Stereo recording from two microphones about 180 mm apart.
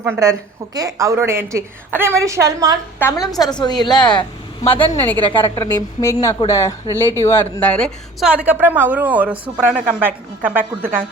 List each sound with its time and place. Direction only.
0.0 s a woman's voice: 15° right (ahead or behind)
3.0 s a woman's voice: 20° left (ahead or behind)
4.8 s a woman's voice: 10° left (ahead or behind); by 11.0 s 10° right (ahead or behind)